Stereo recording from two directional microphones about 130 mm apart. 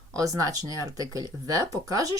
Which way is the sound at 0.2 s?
25° right (ahead or behind).